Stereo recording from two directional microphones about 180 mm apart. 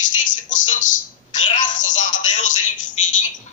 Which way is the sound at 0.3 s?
45° left (ahead or behind).